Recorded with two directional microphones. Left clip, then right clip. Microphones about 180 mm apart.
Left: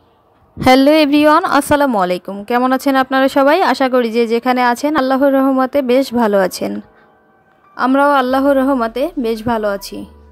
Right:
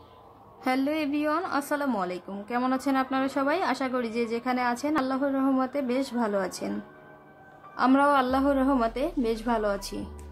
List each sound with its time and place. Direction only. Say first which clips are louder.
0.6 s a woman's voice: left 18 dB; 50° left (ahead or behind)
7.7 s speech: left 10 dB; 40° left (ahead or behind)